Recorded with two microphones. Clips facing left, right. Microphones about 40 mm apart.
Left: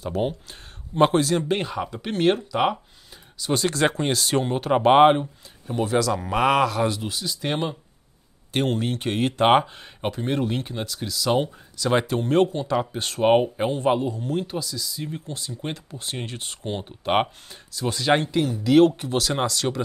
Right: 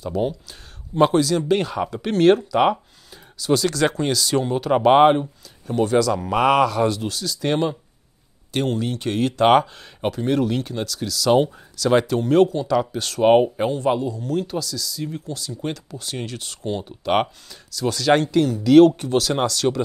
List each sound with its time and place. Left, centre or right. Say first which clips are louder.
0.0 s speech: right 2 dB; left
1.8 s speech: right 5 dB; centre
3.5 s speech: right 2 dB; left
4.6 s speech: right 1 dB; centre
7.1 s speech: right 4 dB; centre
8.5 s speech: right 1 dB; left
9.5 s speech: right 2 dB; centre
13.2 s speech: right 3 dB; centre
13.7 s speech: right 1 dB; left